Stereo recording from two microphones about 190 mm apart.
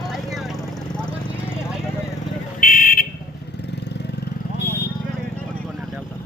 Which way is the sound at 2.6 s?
45° left (ahead or behind).